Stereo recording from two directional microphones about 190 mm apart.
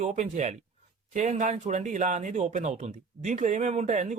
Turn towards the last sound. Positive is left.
turn(degrees=-40)  # may be behind; listen again after turning